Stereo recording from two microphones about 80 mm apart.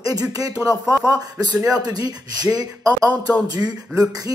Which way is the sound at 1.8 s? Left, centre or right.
Right.